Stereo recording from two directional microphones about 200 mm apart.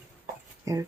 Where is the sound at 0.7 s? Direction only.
15° right (ahead or behind).